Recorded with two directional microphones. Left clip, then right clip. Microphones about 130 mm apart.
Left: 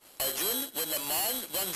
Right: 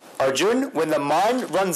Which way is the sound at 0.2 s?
35° right (ahead or behind).